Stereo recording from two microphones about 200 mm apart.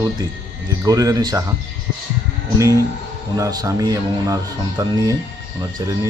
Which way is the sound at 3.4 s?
15° right (ahead or behind).